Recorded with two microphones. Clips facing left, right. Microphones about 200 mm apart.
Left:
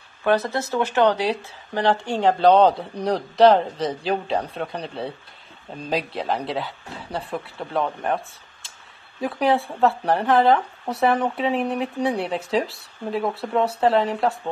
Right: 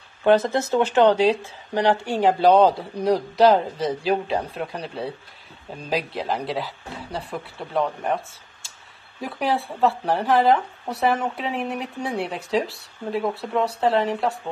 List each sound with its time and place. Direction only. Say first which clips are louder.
0.2 s speech: right 3 dB; 20° right (ahead or behind); by 14.3 s centre (ahead or behind)